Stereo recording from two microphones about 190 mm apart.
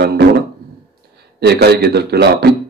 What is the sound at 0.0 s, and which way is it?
A man's voice, 60° right (ahead or behind).